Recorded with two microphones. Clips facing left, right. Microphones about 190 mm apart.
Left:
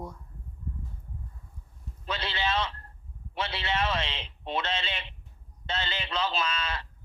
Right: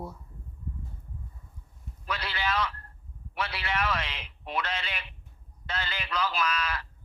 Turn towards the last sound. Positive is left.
turn(degrees=25)  # may be behind; listen again after turning